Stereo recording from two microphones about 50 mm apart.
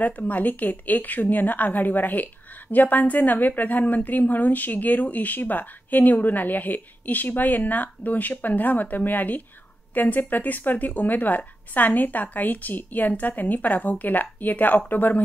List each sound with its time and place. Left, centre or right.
0.0 s a woman's voice: left